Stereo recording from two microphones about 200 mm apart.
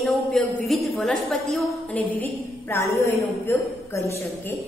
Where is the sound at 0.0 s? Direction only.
Centre (ahead or behind).